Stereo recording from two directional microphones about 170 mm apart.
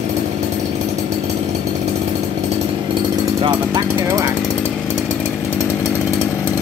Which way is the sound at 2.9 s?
30° right (ahead or behind).